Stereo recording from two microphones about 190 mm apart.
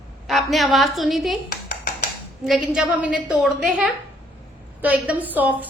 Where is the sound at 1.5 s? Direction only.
55° left (ahead or behind).